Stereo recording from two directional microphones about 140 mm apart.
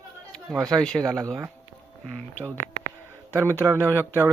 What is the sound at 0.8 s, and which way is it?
Speech, 5° left (ahead or behind).